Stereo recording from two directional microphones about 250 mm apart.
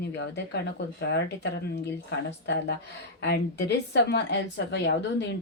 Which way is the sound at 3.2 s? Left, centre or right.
Left.